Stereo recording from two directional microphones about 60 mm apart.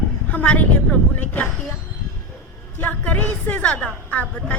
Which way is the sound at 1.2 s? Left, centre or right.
Left.